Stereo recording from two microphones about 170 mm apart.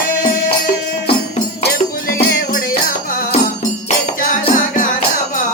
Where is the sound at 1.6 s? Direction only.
70° left (ahead or behind).